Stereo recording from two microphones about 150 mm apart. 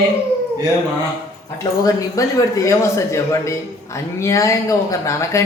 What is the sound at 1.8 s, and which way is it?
Speech, 25° left (ahead or behind).